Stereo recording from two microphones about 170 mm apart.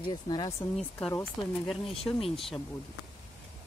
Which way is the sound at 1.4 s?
5° left (ahead or behind).